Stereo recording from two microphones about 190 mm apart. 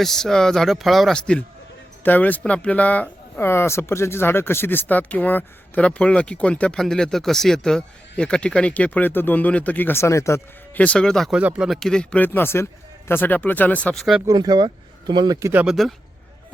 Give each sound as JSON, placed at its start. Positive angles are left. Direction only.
{"t": 0.0, "sound": "speech", "side_deg": 0}
{"t": 14.3, "sound": "speech", "side_deg": -20}
{"t": 15.6, "sound": "speech", "side_deg": 0}